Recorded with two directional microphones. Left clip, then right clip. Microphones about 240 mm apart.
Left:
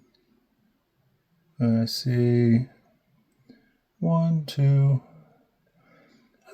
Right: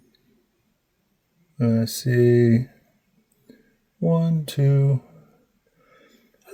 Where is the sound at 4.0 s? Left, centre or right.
Right.